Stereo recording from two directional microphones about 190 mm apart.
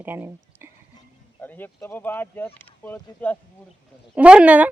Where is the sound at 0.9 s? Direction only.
20° left (ahead or behind).